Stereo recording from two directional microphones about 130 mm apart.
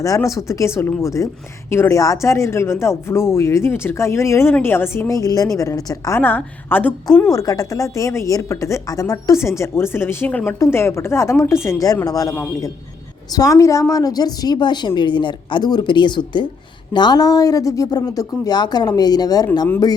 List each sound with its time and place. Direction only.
0.0 s a woman's voice: 25° left (ahead or behind)
7.3 s a woman's voice: 25° left (ahead or behind)